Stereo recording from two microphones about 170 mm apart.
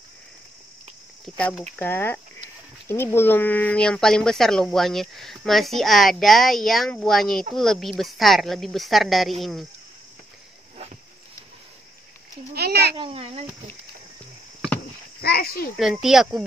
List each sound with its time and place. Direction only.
1.8 s speech: 10° left (ahead or behind)
12.5 s speech: 70° right (ahead or behind)
12.9 s speech: 30° right (ahead or behind)
15.2 s speech: 60° left (ahead or behind)
15.8 s speech: centre (ahead or behind)